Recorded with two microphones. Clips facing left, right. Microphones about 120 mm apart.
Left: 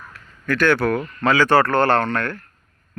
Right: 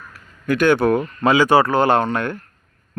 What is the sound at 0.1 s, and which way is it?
Speech, 15° right (ahead or behind).